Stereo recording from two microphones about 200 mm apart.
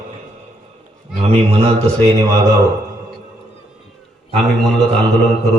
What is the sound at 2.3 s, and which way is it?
Speech, 15° right (ahead or behind).